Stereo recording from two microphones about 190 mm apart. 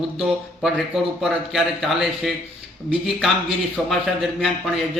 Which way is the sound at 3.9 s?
Centre (ahead or behind).